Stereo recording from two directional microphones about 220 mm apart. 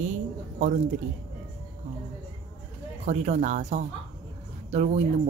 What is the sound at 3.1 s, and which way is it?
Speech, 35° right (ahead or behind).